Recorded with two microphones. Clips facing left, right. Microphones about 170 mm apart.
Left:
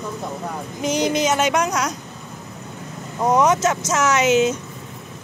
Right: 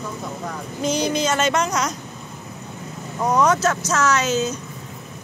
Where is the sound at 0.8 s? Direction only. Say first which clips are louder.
Left 1 dB; 15° left (ahead or behind).